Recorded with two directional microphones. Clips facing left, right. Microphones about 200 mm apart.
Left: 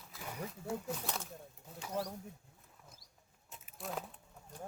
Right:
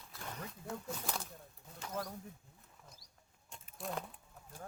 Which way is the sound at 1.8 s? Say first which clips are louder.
Left 3 dB; 5° left (ahead or behind).